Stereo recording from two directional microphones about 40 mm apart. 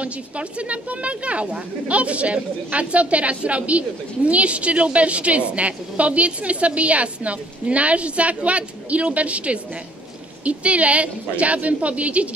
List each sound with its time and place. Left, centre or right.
0.0 s a woman's voice: right